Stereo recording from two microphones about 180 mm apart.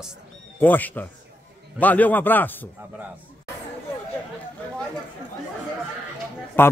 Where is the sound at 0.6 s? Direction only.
10° left (ahead or behind).